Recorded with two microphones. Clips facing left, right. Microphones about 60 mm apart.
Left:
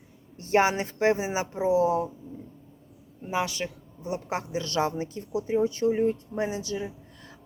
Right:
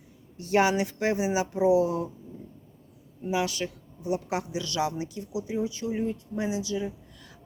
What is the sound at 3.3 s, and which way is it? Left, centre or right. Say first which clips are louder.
A woman's voice: right 1 dB; left.